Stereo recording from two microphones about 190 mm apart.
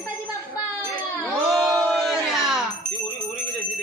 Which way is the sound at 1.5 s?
Centre (ahead or behind).